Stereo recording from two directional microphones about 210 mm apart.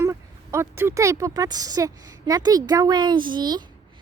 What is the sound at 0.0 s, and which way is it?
A woman's voice, 15° right (ahead or behind).